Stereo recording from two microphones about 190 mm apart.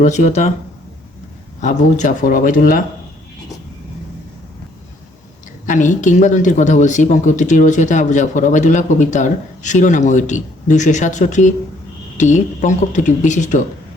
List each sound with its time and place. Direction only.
0.0 s speech: 40° left (ahead or behind)
1.6 s speech: 40° left (ahead or behind)
5.6 s speech: 40° left (ahead or behind)